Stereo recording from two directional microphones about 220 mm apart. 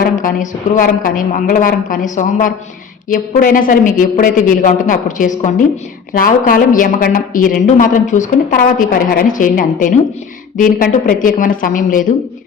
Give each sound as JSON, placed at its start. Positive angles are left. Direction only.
{"t": 0.0, "sound": "a woman's voice", "side_deg": 40}